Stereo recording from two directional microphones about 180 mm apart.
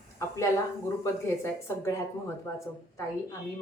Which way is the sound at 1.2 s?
15° left (ahead or behind).